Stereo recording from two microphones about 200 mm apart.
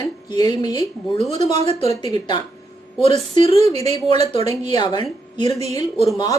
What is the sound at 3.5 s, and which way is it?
Speech, 30° right (ahead or behind).